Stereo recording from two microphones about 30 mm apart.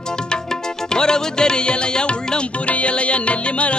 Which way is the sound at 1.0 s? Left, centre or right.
Left.